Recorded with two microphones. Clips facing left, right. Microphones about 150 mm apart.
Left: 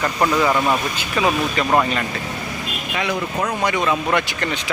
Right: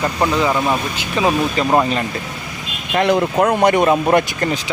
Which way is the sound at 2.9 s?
55° right (ahead or behind).